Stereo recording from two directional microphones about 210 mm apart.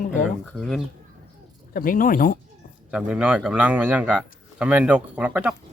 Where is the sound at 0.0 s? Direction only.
40° left (ahead or behind).